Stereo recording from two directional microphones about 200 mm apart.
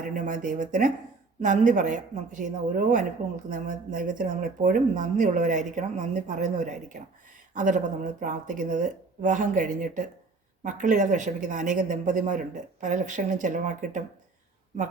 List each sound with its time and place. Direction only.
0.1 s a woman's voice: 40° right (ahead or behind)